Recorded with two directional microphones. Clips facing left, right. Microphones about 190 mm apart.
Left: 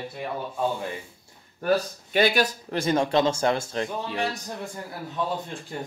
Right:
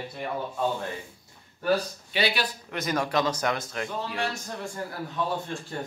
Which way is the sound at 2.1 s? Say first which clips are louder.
Left 6 dB; 45° left (ahead or behind).